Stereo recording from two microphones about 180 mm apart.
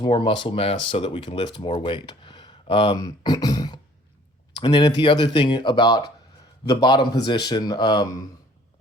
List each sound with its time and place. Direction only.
0.0 s a man's voice: 25° left (ahead or behind)